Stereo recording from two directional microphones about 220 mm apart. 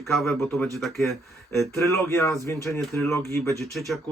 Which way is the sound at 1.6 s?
15° left (ahead or behind).